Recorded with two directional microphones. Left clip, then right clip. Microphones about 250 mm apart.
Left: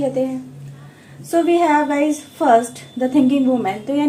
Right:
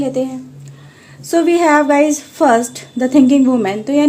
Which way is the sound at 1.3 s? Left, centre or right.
Right.